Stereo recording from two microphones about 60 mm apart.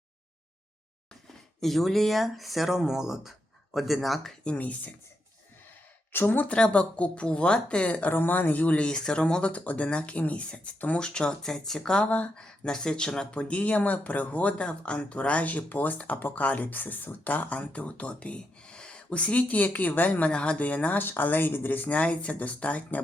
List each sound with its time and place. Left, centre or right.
1.6 s speech: centre
4.4 s speech: left
6.1 s speech: left
6.5 s speech: centre
12.0 s speech: left
12.4 s speech: centre